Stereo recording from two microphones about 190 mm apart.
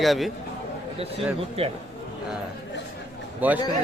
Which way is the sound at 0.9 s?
30° right (ahead or behind).